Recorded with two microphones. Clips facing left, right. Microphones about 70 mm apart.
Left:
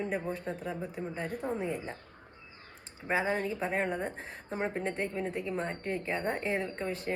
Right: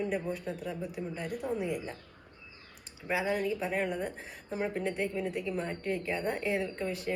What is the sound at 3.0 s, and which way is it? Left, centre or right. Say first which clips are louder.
Speech: even; left.